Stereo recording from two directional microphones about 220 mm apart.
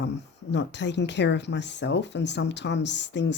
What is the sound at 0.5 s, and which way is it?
Speech, 50° left (ahead or behind).